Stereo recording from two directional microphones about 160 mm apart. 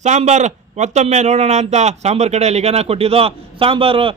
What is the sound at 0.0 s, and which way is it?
Speech, 50° right (ahead or behind).